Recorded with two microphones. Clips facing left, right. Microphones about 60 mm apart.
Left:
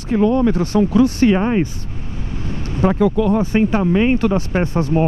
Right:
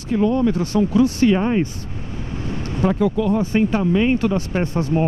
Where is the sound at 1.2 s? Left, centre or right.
Left.